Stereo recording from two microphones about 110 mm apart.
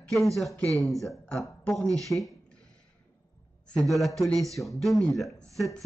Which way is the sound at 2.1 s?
25° left (ahead or behind).